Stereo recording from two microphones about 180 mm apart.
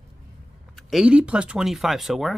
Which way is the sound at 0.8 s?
Centre (ahead or behind).